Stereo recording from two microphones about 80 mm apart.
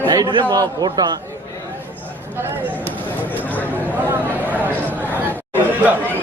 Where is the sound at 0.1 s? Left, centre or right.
Right.